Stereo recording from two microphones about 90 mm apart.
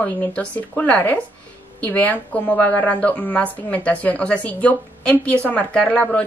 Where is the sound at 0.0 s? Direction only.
10° left (ahead or behind).